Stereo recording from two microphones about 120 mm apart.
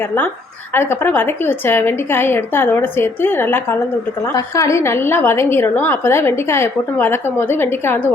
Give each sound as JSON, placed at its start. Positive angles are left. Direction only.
{"t": 0.7, "sound": "a woman's voice", "side_deg": 20}